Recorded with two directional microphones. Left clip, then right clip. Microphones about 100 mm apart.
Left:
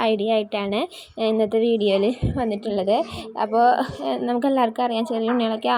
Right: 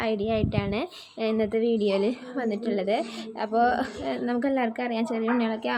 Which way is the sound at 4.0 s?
40° left (ahead or behind).